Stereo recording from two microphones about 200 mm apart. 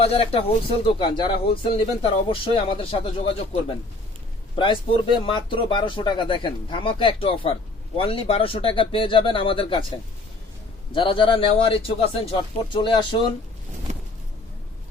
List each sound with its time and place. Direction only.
0.0 s speech: 30° left (ahead or behind)
10.9 s speech: 25° left (ahead or behind)